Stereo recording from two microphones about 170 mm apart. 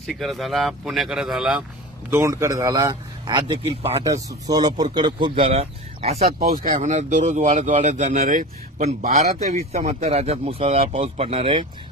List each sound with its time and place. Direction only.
0.0 s speech: centre (ahead or behind)
2.0 s a man's voice: 15° right (ahead or behind)
3.3 s speech: 30° right (ahead or behind)
4.0 s speech: 20° right (ahead or behind)